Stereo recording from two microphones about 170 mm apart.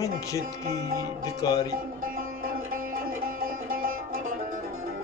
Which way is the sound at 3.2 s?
55° right (ahead or behind).